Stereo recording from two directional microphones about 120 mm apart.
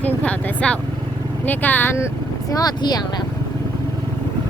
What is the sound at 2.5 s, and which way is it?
Speech, 30° left (ahead or behind).